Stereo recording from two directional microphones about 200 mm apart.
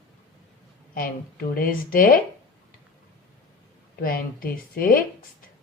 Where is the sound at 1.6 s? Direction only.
45° left (ahead or behind).